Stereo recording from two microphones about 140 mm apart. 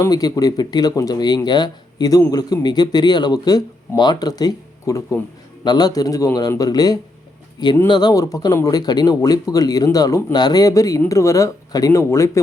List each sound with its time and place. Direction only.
0.0 s speech: 25° left (ahead or behind)